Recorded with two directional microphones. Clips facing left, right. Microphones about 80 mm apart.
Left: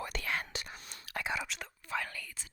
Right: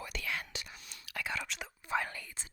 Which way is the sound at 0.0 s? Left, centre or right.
Left.